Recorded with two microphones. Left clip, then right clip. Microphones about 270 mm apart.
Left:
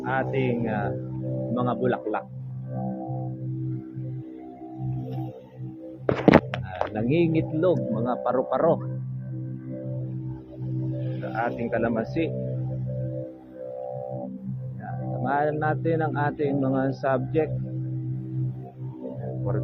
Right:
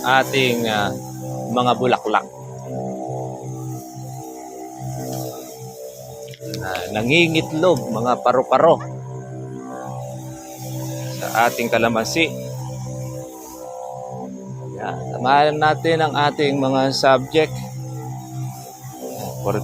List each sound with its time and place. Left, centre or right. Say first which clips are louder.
0.0 s speech: right 10 dB; right
6.9 s speech: right 8 dB; centre
11.3 s speech: right 10 dB; right
14.8 s speech: right 9 dB; right